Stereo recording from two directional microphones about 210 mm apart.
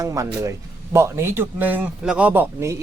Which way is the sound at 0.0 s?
15° right (ahead or behind).